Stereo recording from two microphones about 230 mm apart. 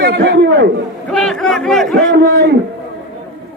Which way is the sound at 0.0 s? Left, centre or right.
Right.